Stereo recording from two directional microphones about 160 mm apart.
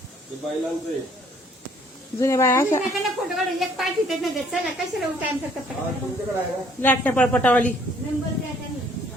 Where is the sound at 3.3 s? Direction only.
Centre (ahead or behind).